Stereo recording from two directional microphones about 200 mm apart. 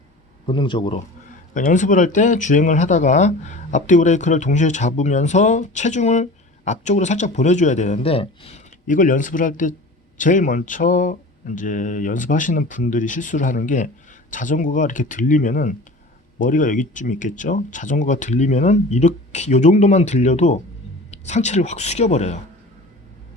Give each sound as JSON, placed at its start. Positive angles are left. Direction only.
{"t": 0.4, "sound": "speech", "side_deg": 25}
{"t": 1.5, "sound": "speech", "side_deg": 40}